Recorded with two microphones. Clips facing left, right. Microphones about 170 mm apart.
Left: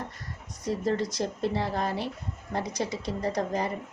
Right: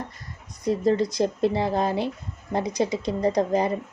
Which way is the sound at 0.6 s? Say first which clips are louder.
Right 6 dB; 15° right (ahead or behind).